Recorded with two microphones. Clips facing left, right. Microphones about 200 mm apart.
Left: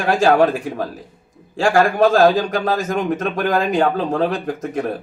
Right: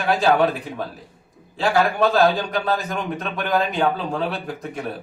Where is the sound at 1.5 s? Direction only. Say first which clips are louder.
Left 4 dB; 45° left (ahead or behind).